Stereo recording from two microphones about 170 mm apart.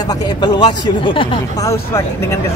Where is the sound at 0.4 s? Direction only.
25° left (ahead or behind).